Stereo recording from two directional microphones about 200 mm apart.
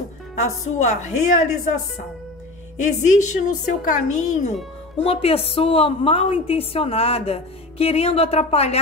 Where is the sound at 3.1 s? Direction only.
40° left (ahead or behind).